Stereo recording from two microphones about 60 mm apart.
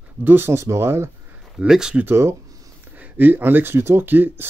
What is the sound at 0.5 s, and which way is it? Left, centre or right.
Speech, right.